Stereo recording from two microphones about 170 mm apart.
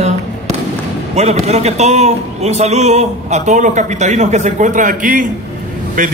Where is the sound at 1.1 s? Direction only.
40° right (ahead or behind).